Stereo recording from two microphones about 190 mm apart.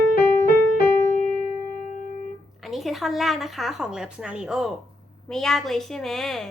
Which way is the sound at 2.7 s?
Centre (ahead or behind).